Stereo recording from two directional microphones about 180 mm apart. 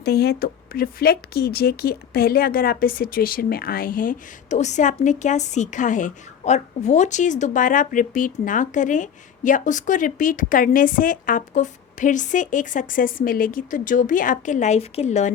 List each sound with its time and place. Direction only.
0.0 s speech: 60° left (ahead or behind); by 15.3 s 40° left (ahead or behind)